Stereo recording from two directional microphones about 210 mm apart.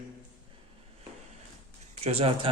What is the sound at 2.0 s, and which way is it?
Speech, 25° right (ahead or behind).